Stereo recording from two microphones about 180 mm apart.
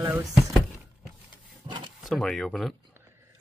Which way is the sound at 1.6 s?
25° right (ahead or behind).